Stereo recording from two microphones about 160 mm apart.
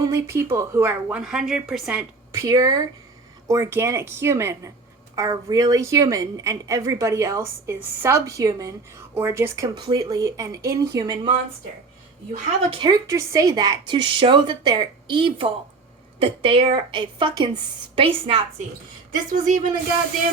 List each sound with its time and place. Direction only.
0.0 s speech: 15° right (ahead or behind)
1.2 s a woman's voice: 5° right (ahead or behind)
2.3 s a woman's voice: 20° right (ahead or behind)
9.7 s a woman's voice: 25° right (ahead or behind)
12.7 s a woman's voice: 25° right (ahead or behind)
19.3 s speech: 55° right (ahead or behind)